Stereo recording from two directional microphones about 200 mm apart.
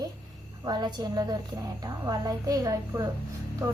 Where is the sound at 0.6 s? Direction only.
20° right (ahead or behind).